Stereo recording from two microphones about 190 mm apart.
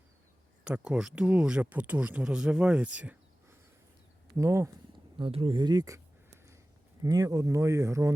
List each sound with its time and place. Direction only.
0.6 s speech: 5° right (ahead or behind)
4.4 s speech: 15° right (ahead or behind)
5.1 s speech: 25° right (ahead or behind)
7.0 s speech: 20° right (ahead or behind)